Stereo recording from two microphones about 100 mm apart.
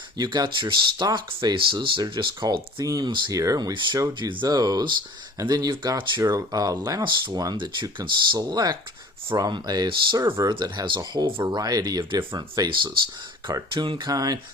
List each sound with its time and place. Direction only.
0.2 s speech: 45° right (ahead or behind)
1.5 s speech: 55° right (ahead or behind)
3.3 s speech: 35° right (ahead or behind)
3.7 s speech: 55° right (ahead or behind)
4.4 s speech: 40° right (ahead or behind)
7.0 s speech: 50° right (ahead or behind)
11.5 s speech: 40° right (ahead or behind)
14.1 s speech: 40° right (ahead or behind)